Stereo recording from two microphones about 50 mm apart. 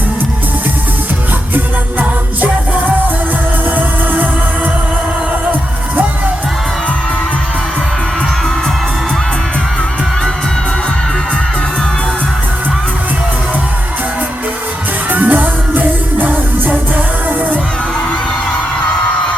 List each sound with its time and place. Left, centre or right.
1.5 s music: right
15.1 s music: right